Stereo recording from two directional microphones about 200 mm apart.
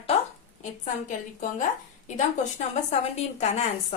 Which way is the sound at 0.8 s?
40° left (ahead or behind).